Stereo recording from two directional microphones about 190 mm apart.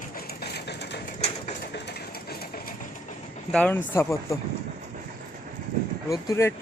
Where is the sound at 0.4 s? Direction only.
60° left (ahead or behind).